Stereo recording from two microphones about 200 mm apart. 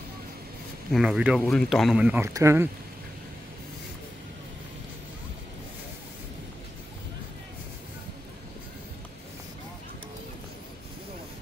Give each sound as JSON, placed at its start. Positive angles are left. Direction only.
{"t": 0.9, "sound": "speech", "side_deg": -5}